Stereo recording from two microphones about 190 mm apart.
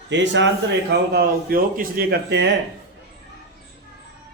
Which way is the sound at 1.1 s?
50° right (ahead or behind).